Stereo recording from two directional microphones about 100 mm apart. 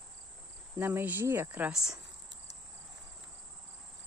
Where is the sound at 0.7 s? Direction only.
20° right (ahead or behind).